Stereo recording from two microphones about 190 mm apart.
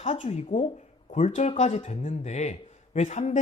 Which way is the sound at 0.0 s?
35° left (ahead or behind).